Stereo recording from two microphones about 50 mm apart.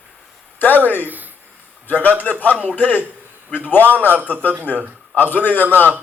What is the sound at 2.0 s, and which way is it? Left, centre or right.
Speech, left.